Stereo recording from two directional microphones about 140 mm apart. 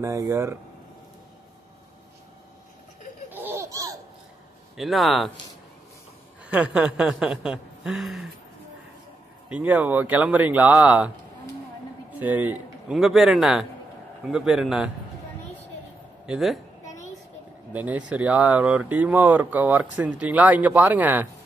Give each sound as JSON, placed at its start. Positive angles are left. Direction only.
{"t": 0.0, "sound": "speech", "side_deg": -20}
{"t": 3.3, "sound": "laughter", "side_deg": -15}
{"t": 4.7, "sound": "speech", "side_deg": 0}
{"t": 6.5, "sound": "speech", "side_deg": -10}
{"t": 9.5, "sound": "speech", "side_deg": -10}
{"t": 12.2, "sound": "speech", "side_deg": -10}
{"t": 12.9, "sound": "speech", "side_deg": 0}
{"t": 16.3, "sound": "a woman's voice", "side_deg": 0}
{"t": 17.7, "sound": "speech", "side_deg": -10}